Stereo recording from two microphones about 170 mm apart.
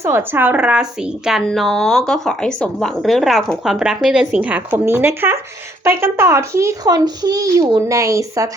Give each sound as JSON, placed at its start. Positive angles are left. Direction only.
{"t": 0.0, "sound": "a woman's voice", "side_deg": -15}